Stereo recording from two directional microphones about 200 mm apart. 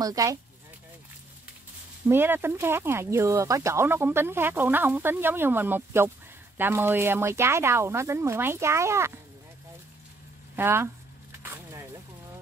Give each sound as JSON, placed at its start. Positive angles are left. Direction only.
{"t": 0.0, "sound": "speech", "side_deg": -15}
{"t": 2.0, "sound": "speech", "side_deg": -10}
{"t": 10.5, "sound": "speech", "side_deg": -10}
{"t": 11.4, "sound": "a sound", "side_deg": -10}